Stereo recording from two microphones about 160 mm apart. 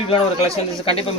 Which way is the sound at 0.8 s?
35° left (ahead or behind).